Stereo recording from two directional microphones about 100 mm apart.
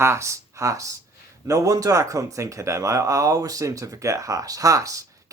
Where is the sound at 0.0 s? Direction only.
30° right (ahead or behind).